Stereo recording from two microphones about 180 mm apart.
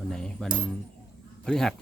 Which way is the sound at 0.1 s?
5° left (ahead or behind).